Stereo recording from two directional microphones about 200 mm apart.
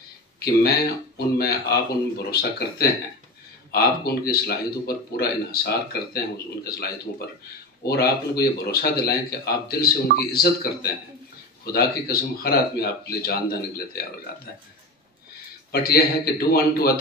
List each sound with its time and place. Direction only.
0.4 s speech: 50° left (ahead or behind)
15.7 s speech: 50° left (ahead or behind)